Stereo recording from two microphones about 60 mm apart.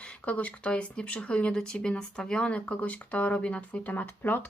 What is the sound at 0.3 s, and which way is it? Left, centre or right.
Speech, left.